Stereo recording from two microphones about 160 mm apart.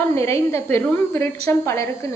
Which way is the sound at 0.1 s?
15° left (ahead or behind).